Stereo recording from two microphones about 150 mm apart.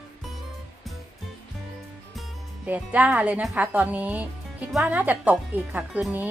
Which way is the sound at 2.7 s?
10° right (ahead or behind).